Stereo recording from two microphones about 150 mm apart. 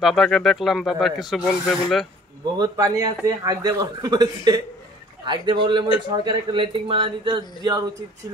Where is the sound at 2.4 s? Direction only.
25° right (ahead or behind).